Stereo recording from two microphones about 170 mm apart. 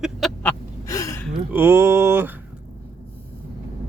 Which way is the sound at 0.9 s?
20° left (ahead or behind).